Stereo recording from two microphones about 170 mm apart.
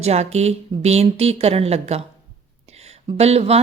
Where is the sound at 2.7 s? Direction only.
40° right (ahead or behind).